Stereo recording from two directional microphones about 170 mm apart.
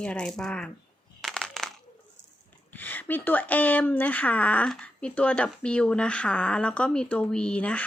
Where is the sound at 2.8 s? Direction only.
10° left (ahead or behind).